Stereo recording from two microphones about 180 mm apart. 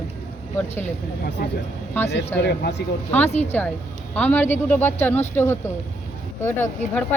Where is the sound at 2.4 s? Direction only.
75° left (ahead or behind).